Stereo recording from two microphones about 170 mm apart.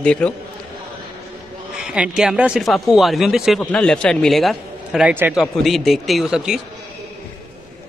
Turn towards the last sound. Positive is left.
turn(degrees=-5)  # may be behind; listen again after turning